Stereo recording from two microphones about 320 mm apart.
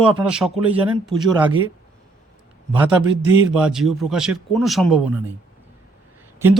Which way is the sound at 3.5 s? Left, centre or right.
Centre.